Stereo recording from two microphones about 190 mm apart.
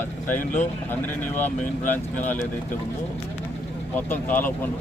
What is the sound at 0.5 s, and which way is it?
Speech, 10° left (ahead or behind).